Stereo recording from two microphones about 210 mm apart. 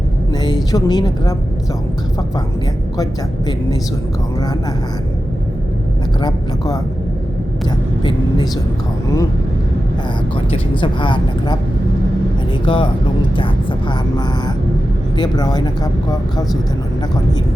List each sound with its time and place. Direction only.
0.4 s speech: 20° left (ahead or behind)
3.0 s speech: 20° left (ahead or behind)
6.1 s speech: 20° left (ahead or behind)
10.5 s speech: 25° left (ahead or behind)
12.6 s speech: 25° left (ahead or behind)
15.2 s speech: 20° left (ahead or behind)